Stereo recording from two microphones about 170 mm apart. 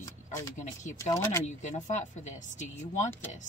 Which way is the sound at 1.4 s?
45° left (ahead or behind).